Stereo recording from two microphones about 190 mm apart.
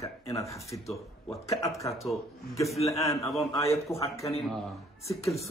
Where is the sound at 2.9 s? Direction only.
15° left (ahead or behind).